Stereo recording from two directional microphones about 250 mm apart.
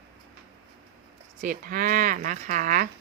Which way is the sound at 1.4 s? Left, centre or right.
Right.